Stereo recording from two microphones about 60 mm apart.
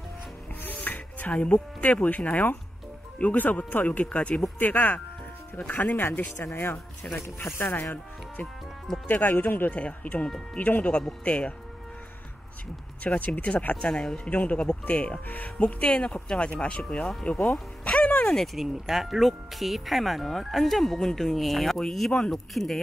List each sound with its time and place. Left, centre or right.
0.7 s speech: left
9.0 s speech: left
13.0 s speech: left
18.4 s speech: centre